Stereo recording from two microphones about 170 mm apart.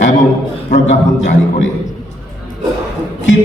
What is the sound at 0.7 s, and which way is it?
A man's voice, 45° left (ahead or behind).